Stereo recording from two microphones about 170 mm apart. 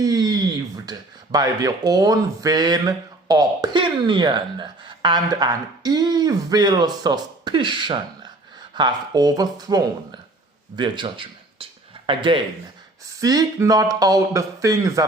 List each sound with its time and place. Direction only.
0.0 s speech: 20° right (ahead or behind)
10.8 s a sound: 30° right (ahead or behind)
13.1 s speech: 20° right (ahead or behind)